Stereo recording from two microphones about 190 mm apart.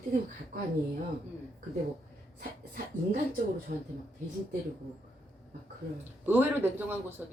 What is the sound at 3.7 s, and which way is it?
Speech, 50° right (ahead or behind).